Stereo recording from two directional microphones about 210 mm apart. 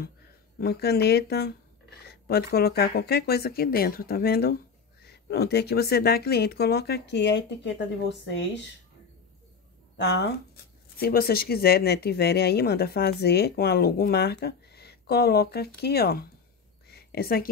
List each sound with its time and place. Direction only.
0.6 s speech: 50° left (ahead or behind)
9.9 s speech: 55° left (ahead or behind)
16.8 s a sound: 50° left (ahead or behind)